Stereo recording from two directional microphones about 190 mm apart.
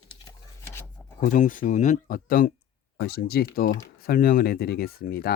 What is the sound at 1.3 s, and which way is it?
Speech, 45° left (ahead or behind).